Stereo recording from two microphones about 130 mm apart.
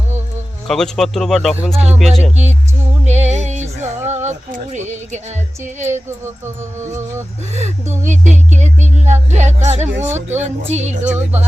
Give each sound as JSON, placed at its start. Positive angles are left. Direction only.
{"t": 0.7, "sound": "speech", "side_deg": 5}
{"t": 3.1, "sound": "music", "side_deg": -60}
{"t": 5.9, "sound": "speech", "side_deg": -20}
{"t": 7.5, "sound": "speech", "side_deg": -60}